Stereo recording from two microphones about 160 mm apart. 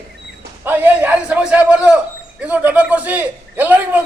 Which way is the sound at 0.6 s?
10° right (ahead or behind).